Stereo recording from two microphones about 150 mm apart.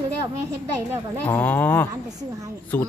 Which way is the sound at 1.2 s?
10° left (ahead or behind).